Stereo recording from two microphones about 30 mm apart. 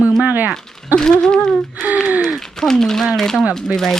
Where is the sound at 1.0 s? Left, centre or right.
Left.